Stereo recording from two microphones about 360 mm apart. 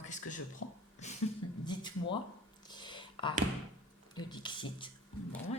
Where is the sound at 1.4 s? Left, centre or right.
Left.